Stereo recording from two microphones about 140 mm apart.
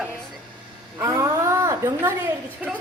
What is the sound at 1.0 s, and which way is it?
A woman's voice, 20° right (ahead or behind).